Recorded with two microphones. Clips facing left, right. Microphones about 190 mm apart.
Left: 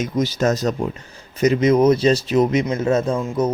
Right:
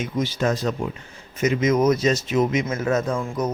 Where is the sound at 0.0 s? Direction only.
40° left (ahead or behind).